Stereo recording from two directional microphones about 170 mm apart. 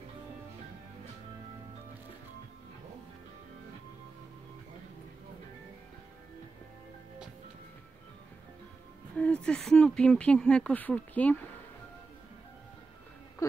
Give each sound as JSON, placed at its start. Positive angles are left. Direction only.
{"t": 9.1, "sound": "speech", "side_deg": 5}
{"t": 13.4, "sound": "music", "side_deg": 20}